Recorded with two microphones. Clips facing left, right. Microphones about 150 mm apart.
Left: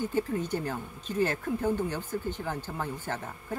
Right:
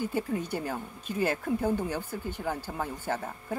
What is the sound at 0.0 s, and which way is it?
A woman's voice, 10° right (ahead or behind).